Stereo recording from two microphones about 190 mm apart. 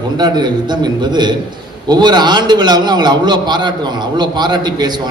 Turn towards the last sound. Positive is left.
turn(degrees=-20)  # may be behind; listen again after turning